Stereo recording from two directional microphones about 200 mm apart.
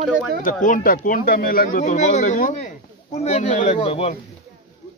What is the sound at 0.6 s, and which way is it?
Speech, 40° left (ahead or behind).